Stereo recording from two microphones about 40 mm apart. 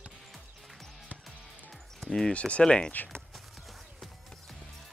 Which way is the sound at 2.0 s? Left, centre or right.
Centre.